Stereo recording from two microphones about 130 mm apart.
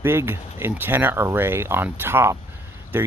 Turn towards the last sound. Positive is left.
turn(degrees=-15)  # may be behind; listen again after turning